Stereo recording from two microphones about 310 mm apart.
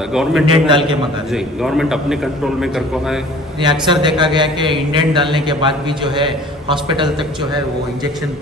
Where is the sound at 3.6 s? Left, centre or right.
Centre.